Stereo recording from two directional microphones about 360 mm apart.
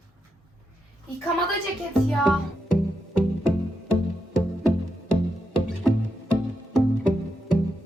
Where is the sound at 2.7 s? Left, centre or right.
Left.